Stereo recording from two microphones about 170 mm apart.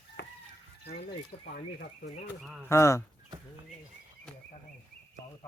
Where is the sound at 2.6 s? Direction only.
15° left (ahead or behind).